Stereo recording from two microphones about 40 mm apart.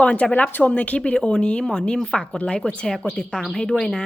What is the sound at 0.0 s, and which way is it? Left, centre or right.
Speech, left.